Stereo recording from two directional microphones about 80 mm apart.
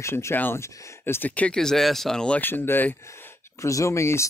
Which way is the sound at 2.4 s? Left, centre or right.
Left.